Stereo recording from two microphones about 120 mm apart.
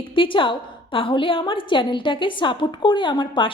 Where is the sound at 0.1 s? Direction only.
45° left (ahead or behind).